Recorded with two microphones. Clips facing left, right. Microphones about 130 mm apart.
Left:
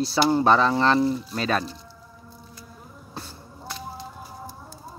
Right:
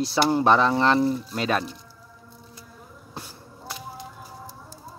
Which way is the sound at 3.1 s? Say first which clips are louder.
Left 1 dB; 10° right (ahead or behind).